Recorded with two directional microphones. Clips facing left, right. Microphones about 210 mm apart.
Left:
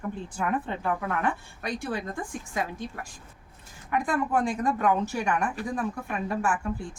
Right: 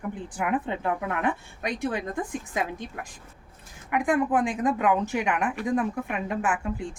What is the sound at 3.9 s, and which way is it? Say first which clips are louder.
A woman's voice: right 3 dB; 15° right (ahead or behind).